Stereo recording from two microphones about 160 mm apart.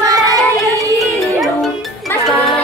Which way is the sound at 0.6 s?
Centre (ahead or behind).